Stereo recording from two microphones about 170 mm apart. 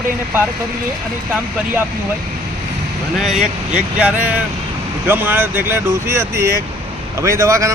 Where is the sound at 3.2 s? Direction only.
Centre (ahead or behind); by 7.7 s 15° right (ahead or behind).